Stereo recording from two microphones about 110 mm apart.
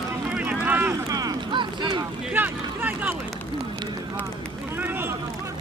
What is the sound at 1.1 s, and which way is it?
Run, 35° right (ahead or behind).